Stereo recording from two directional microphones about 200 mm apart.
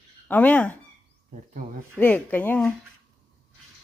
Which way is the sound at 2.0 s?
10° left (ahead or behind).